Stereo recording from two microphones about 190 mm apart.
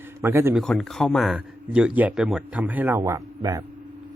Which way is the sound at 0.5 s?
Centre (ahead or behind).